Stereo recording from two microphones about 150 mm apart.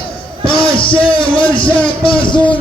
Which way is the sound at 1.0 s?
35° left (ahead or behind).